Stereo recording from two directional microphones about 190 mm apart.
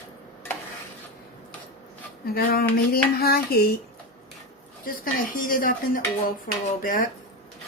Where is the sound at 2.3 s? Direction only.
55° left (ahead or behind).